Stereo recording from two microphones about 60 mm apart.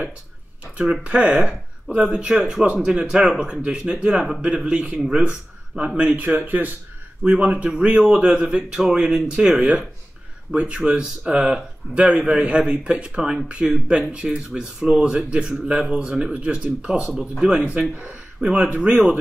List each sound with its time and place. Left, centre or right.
1.0 s speech: right
8.7 s speech: centre
17.1 s speech: centre
17.5 s speech: centre